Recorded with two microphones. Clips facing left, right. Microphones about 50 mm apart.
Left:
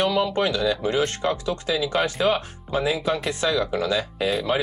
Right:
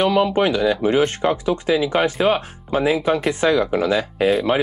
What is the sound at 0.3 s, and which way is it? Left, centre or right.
Speech, right.